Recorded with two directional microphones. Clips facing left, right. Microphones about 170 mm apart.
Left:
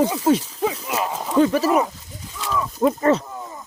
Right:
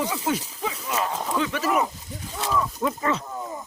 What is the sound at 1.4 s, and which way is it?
Speech, 35° left (ahead or behind).